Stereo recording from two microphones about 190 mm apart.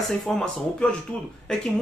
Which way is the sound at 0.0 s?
Centre (ahead or behind).